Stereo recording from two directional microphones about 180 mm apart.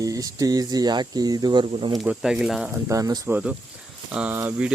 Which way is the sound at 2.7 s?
20° right (ahead or behind).